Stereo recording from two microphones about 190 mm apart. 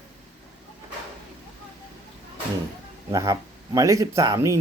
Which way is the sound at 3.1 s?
15° right (ahead or behind).